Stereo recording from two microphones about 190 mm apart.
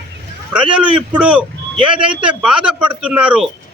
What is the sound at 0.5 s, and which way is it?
Speech, 5° right (ahead or behind).